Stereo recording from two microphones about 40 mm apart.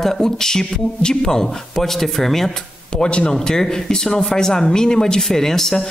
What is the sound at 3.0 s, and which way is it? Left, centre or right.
Speech, left.